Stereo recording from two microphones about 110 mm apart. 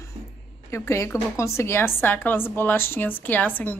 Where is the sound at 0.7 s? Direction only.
25° left (ahead or behind).